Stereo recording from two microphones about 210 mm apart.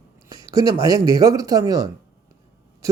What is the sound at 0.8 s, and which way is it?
A man's voice, 15° right (ahead or behind).